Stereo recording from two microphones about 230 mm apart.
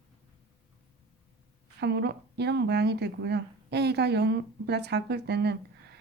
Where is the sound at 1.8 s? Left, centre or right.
Right.